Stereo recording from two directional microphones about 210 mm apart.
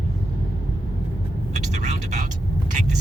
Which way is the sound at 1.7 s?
35° right (ahead or behind).